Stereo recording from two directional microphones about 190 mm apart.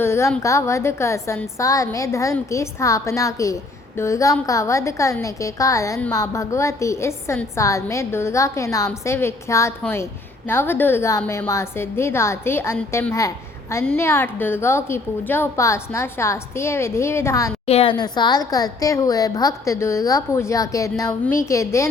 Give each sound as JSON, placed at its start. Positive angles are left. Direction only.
{"t": 0.0, "sound": "a woman's voice", "side_deg": 15}
{"t": 17.7, "sound": "a woman's voice", "side_deg": 30}